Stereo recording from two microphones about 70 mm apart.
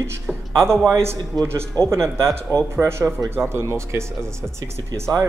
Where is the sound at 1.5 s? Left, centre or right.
Right.